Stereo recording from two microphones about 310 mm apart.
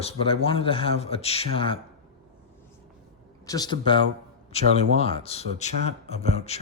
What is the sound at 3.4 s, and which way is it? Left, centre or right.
Speech, centre.